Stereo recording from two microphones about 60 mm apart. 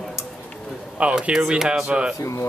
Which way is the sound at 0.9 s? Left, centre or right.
Centre.